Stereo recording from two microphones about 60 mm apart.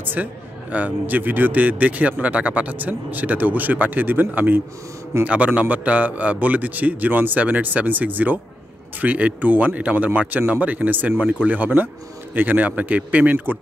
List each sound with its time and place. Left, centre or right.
0.0 s a man's voice: right